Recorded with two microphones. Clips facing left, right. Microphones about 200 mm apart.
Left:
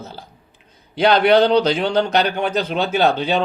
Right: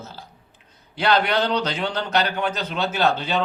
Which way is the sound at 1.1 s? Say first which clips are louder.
Left 7 dB; 60° left (ahead or behind).